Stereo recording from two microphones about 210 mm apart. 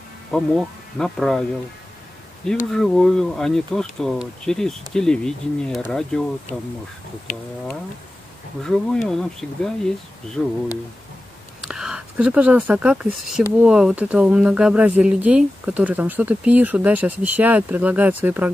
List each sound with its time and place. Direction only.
0.3 s speech: 5° left (ahead or behind)
2.7 s speech: centre (ahead or behind)
7.3 s speech: 35° left (ahead or behind)
8.6 s speech: centre (ahead or behind)
11.6 s speech: 5° right (ahead or behind)